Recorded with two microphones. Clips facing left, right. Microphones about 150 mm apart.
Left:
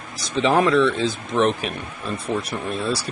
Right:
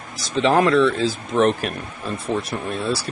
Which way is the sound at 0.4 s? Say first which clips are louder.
Right 1 dB; centre (ahead or behind).